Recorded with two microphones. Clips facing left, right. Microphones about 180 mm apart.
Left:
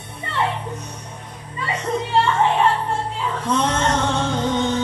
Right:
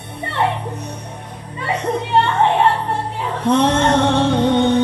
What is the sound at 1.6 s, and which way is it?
Music, 65° right (ahead or behind).